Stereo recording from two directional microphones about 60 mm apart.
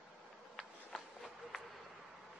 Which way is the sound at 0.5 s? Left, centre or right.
Centre.